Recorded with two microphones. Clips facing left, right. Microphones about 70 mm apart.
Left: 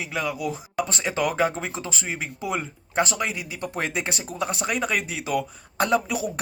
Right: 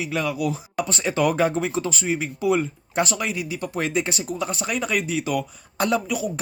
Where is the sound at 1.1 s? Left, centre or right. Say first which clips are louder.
Right 4 dB; centre.